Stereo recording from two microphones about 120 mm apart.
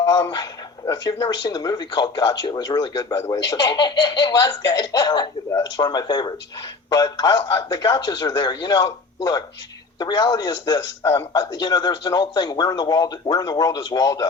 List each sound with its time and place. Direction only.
0.1 s a man's voice: 35° left (ahead or behind)
5.5 s a man's voice: 25° left (ahead or behind)